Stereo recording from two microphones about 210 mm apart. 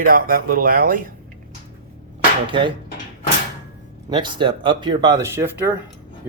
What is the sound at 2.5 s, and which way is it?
Speech, 25° right (ahead or behind).